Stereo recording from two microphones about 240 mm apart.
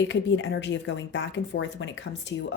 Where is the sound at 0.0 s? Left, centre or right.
Left.